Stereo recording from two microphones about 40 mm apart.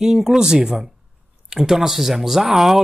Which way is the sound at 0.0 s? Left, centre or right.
Centre.